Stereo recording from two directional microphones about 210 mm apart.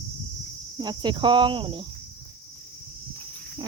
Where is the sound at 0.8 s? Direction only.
20° right (ahead or behind).